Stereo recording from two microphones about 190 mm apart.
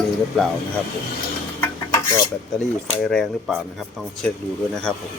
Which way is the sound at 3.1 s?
5° left (ahead or behind).